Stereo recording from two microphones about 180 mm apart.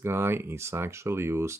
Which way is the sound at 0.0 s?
15° right (ahead or behind).